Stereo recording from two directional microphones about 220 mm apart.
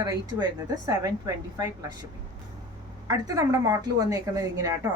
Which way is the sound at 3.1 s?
15° right (ahead or behind).